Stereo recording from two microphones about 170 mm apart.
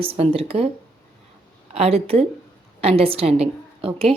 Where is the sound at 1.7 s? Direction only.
35° right (ahead or behind).